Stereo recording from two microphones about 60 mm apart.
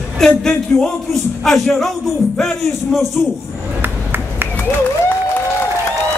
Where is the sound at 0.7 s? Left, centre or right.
Left.